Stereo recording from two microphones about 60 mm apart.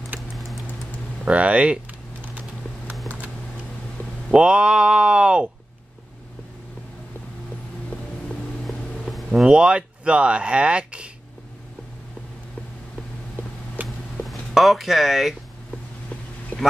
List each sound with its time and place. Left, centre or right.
1.2 s speech: right
4.3 s speech: centre
8.6 s vehicle: centre
9.3 s speech: centre
13.8 s a sound: right
14.2 s speech: centre